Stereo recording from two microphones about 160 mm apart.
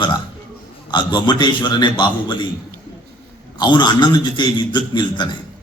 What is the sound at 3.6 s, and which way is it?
A man's voice, 30° left (ahead or behind).